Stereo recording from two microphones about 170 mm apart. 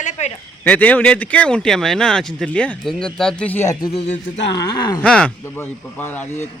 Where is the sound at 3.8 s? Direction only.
35° left (ahead or behind).